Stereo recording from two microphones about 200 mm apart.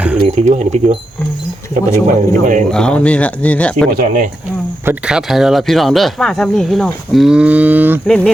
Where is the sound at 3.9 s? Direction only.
45° right (ahead or behind).